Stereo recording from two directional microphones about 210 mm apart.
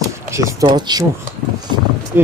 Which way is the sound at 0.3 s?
15° right (ahead or behind).